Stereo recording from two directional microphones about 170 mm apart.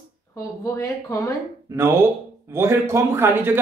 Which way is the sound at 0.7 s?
20° left (ahead or behind).